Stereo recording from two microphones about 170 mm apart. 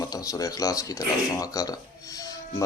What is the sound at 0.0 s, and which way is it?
Speech, 20° left (ahead or behind).